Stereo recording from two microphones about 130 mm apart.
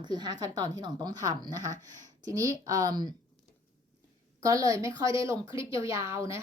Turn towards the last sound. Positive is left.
turn(degrees=-20)  # may be behind; listen again after turning